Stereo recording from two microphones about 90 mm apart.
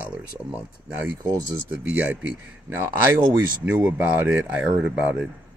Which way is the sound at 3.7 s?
15° right (ahead or behind).